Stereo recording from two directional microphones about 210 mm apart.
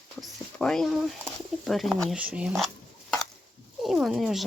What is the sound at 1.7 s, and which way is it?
Speech, centre (ahead or behind).